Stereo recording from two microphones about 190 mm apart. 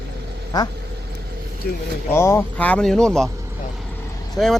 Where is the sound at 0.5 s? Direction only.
20° left (ahead or behind).